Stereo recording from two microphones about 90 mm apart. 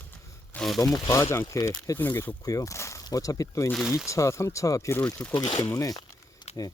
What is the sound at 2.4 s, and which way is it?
Speech, 40° left (ahead or behind).